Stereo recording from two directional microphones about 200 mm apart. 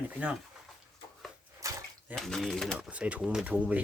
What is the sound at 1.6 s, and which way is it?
Bathtub, 15° right (ahead or behind).